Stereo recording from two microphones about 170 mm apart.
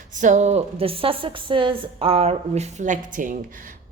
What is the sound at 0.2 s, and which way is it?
A woman's voice, 45° right (ahead or behind).